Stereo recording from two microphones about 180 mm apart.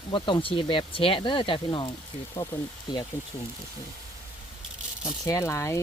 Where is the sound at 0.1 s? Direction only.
25° left (ahead or behind).